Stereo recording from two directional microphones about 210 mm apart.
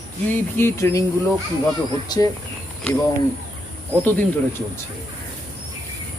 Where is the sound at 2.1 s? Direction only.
15° left (ahead or behind).